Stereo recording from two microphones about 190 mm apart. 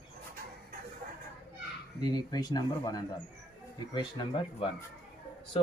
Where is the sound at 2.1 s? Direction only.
20° left (ahead or behind).